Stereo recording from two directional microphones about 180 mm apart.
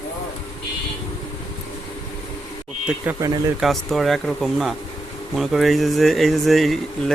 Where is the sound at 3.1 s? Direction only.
15° right (ahead or behind).